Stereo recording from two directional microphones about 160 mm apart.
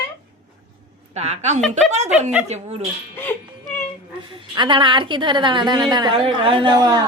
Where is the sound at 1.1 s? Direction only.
45° right (ahead or behind).